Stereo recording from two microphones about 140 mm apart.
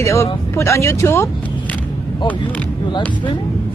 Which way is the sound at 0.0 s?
20° left (ahead or behind).